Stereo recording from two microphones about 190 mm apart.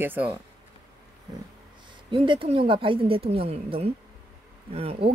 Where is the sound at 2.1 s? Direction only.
25° right (ahead or behind).